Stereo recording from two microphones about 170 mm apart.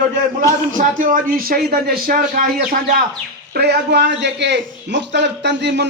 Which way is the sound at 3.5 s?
75° right (ahead or behind).